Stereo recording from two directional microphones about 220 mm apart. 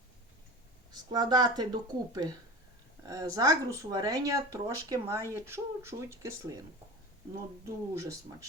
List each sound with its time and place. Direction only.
0.9 s speech: 20° right (ahead or behind)
7.6 s speech: 15° right (ahead or behind)